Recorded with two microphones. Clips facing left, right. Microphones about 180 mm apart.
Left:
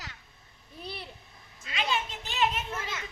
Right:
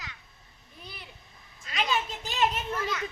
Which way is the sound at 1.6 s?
40° right (ahead or behind).